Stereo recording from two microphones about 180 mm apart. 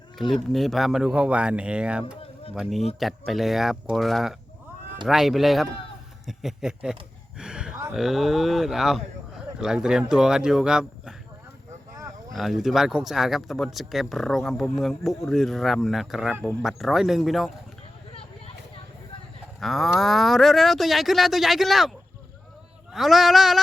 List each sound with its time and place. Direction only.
0.5 s speech: centre (ahead or behind)
7.3 s a sound: 5° right (ahead or behind)
7.9 s speech: centre (ahead or behind)
12.3 s speech: centre (ahead or behind)
18.1 s a sound: 30° left (ahead or behind)
19.5 s speech: centre (ahead or behind)